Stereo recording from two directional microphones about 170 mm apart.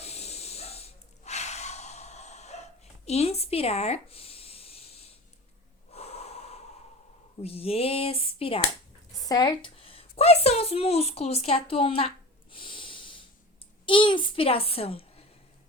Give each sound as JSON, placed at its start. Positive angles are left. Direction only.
{"t": 0.0, "sound": "snort", "side_deg": 40}
{"t": 5.9, "sound": "wheeze", "side_deg": 40}
{"t": 7.4, "sound": "a child's voice", "side_deg": 35}
{"t": 9.1, "sound": "a woman's voice", "side_deg": 20}